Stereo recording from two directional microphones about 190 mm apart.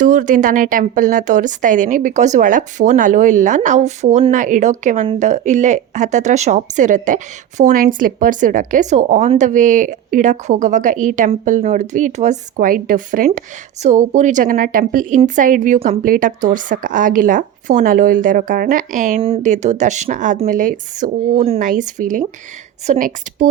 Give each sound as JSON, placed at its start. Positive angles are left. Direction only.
{"t": 0.0, "sound": "a woman's voice", "side_deg": -40}
{"t": 19.2, "sound": "a woman's voice", "side_deg": -35}